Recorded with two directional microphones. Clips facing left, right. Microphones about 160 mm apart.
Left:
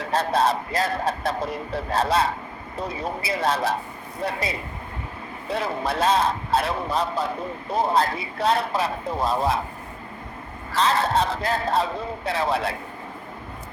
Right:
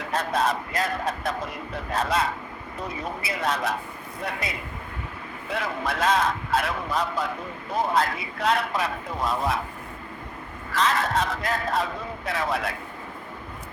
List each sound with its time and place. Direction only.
0.1 s a man's voice: 30° left (ahead or behind)
10.7 s a man's voice: 30° left (ahead or behind)